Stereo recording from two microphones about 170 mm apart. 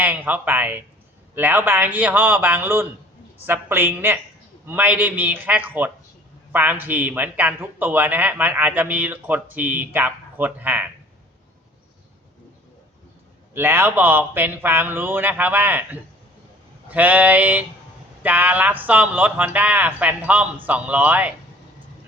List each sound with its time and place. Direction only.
0.0 s a man's voice: 10° right (ahead or behind)
13.5 s a man's voice: 15° right (ahead or behind)